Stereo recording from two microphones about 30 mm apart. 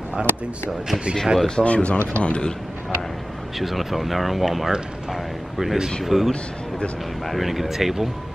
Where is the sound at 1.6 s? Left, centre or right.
Left.